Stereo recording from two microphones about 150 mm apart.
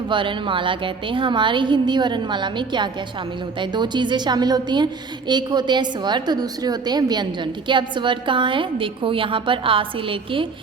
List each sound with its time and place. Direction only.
0.1 s a woman's voice: 35° right (ahead or behind)